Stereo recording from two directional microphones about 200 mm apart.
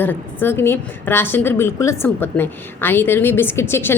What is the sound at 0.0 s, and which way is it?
Speech, 10° left (ahead or behind).